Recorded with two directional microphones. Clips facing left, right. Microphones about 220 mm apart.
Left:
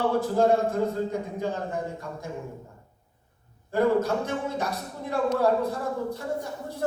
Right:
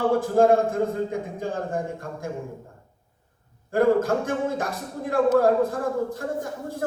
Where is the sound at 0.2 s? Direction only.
50° right (ahead or behind).